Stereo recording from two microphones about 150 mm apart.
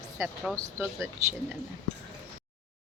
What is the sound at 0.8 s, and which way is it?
Speech, 20° right (ahead or behind).